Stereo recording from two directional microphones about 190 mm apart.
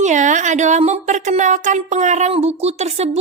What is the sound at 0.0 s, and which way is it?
Speech, 40° right (ahead or behind).